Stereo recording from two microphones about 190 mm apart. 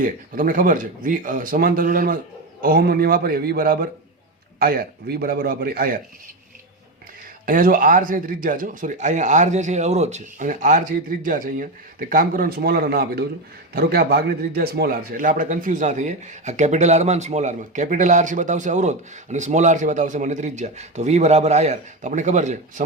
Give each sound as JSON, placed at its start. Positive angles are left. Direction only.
{"t": 0.0, "sound": "speech", "side_deg": -45}
{"t": 7.4, "sound": "a man's voice", "side_deg": -45}